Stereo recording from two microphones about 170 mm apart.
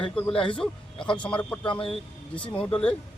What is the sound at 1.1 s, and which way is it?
A man's voice, 5° left (ahead or behind).